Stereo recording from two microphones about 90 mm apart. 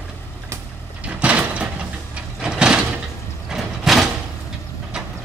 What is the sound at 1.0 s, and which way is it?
Sliding door, 15° right (ahead or behind).